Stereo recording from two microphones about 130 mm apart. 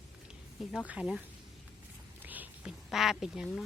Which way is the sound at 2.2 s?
15° right (ahead or behind).